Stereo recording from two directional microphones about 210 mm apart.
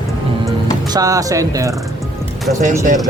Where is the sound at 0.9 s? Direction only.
15° right (ahead or behind).